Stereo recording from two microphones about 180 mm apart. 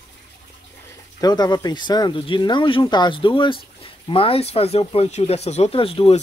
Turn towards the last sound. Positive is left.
turn(degrees=30)  # may be behind; listen again after turning